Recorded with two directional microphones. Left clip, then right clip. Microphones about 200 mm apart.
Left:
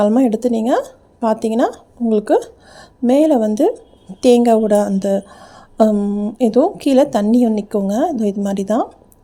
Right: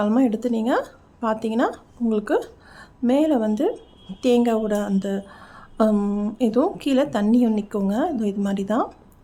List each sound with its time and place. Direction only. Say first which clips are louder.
0.0 s speech: left 7 dB; 25° left (ahead or behind)